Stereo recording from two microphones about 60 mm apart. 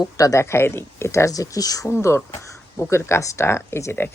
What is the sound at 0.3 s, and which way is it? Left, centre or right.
Speech, left.